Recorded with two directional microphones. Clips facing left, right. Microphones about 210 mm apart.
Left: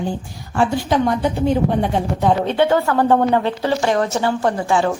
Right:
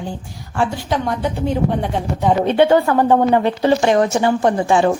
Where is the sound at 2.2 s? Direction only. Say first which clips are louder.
Right 3 dB; 15° right (ahead or behind).